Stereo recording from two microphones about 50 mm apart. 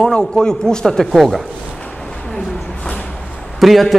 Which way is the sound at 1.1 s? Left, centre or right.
Centre.